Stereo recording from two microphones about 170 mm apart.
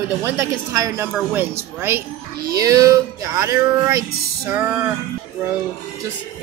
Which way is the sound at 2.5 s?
20° right (ahead or behind).